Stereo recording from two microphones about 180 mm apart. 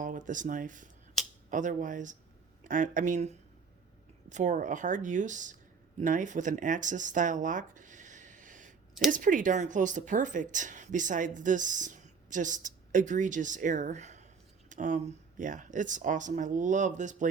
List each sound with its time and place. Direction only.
0.0 s speech: 45° right (ahead or behind)